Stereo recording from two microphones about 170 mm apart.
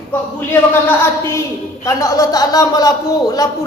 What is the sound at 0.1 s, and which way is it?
A man's voice, 10° left (ahead or behind).